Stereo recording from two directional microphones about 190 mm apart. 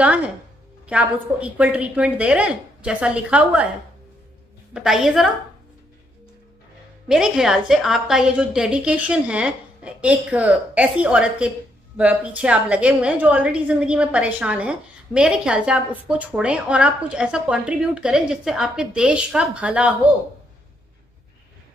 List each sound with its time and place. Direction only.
0.0 s a woman's voice: 5° right (ahead or behind)
4.7 s a woman's voice: centre (ahead or behind)
7.1 s a woman's voice: 5° right (ahead or behind)